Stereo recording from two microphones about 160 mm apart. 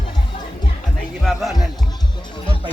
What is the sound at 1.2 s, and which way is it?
Music, centre (ahead or behind).